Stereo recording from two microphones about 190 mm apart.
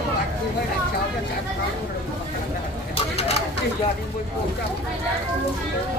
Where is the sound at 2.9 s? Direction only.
30° left (ahead or behind).